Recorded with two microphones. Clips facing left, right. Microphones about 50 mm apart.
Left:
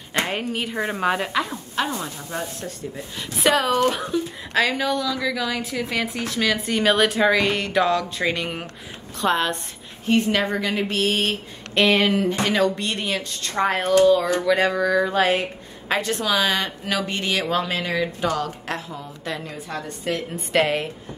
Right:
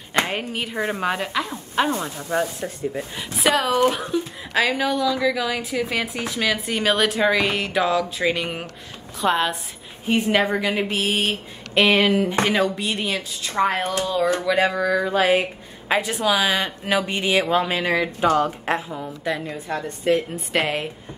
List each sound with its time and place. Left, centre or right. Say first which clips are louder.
0.2 s speech: even; centre
2.6 s a woman's voice: right 5 dB; right
3.3 s speech: even; centre
10.0 s a woman's voice: right 1 dB; centre
18.9 s a woman's voice: right 4 dB; centre
19.7 s a woman's voice: right 6 dB; right
20.3 s speech: left 2 dB; centre